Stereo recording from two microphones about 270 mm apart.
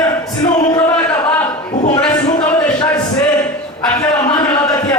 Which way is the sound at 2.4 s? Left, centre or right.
Centre.